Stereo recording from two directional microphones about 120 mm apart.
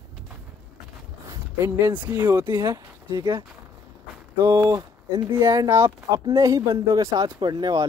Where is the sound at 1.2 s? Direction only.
25° right (ahead or behind).